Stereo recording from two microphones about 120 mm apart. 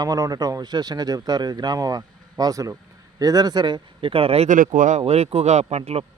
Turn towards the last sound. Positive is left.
turn(degrees=-60)  # may be behind; listen again after turning